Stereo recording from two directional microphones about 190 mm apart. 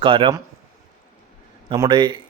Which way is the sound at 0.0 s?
25° right (ahead or behind).